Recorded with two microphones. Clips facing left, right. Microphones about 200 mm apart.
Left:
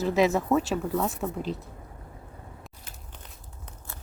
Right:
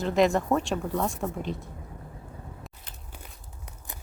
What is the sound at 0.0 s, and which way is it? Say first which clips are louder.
Speech: even; 5° left (ahead or behind).